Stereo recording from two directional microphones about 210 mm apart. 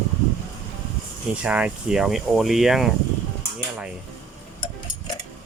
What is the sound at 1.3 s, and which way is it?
Speech, 5° right (ahead or behind).